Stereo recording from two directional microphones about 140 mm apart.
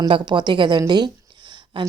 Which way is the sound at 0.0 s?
35° right (ahead or behind).